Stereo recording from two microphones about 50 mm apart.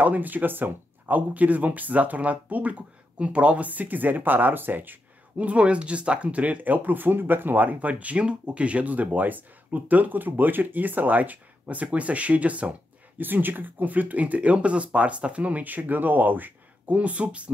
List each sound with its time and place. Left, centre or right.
0.0 s speech: right
5.4 s speech: right
13.2 s speech: right
16.9 s speech: right